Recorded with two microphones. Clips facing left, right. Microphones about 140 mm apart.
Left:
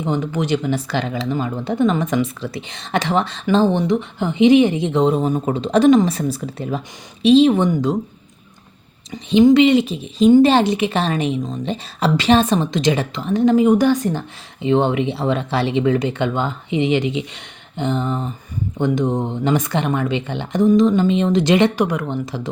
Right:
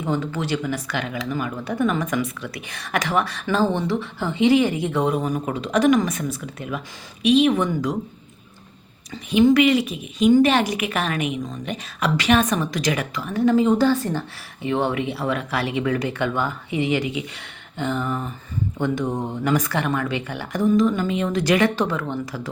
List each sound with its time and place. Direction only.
0.0 s speech: 20° left (ahead or behind)
9.4 s speech: 20° left (ahead or behind)